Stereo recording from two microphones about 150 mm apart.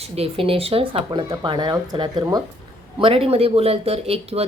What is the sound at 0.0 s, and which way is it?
Speech, 40° right (ahead or behind).